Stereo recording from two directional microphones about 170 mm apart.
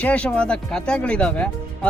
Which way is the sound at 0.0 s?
5° left (ahead or behind).